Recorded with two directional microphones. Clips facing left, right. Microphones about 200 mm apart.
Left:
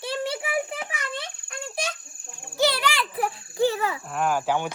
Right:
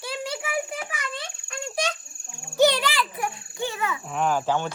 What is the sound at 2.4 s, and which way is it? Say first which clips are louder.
Insect: right 4 dB; centre (ahead or behind).